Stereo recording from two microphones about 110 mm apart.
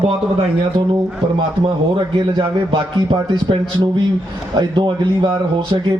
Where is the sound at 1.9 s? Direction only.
50° right (ahead or behind).